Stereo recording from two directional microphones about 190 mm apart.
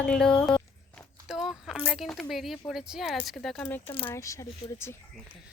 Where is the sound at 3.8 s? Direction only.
30° left (ahead or behind).